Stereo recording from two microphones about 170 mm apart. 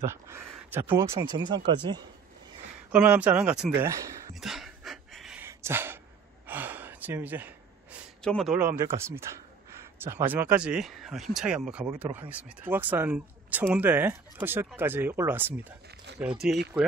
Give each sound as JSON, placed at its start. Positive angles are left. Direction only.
{"t": 0.0, "sound": "speech", "side_deg": -15}
{"t": 2.9, "sound": "speech", "side_deg": -10}
{"t": 4.4, "sound": "dog", "side_deg": 0}
{"t": 5.4, "sound": "a sound", "side_deg": -15}
{"t": 6.4, "sound": "gasp", "side_deg": -10}
{"t": 8.2, "sound": "speech", "side_deg": 5}
{"t": 8.5, "sound": "speech", "side_deg": -15}